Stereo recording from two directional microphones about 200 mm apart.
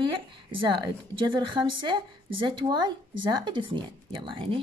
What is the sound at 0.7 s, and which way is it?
A woman's voice, 25° right (ahead or behind).